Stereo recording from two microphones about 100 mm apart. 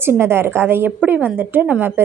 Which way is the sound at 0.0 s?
25° right (ahead or behind).